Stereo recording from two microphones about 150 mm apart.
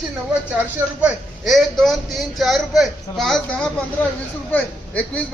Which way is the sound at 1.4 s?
Centre (ahead or behind).